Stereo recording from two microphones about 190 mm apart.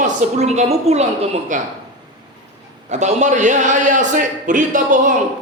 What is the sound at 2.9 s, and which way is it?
A man's voice, 40° right (ahead or behind).